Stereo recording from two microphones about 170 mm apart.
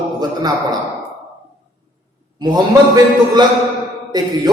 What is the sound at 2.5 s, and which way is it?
Speech, 25° right (ahead or behind).